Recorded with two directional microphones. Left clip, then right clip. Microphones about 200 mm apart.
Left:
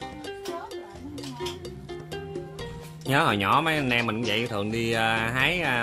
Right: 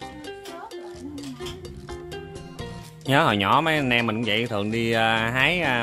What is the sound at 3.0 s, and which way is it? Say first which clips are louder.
Speech: right 3 dB; 20° right (ahead or behind).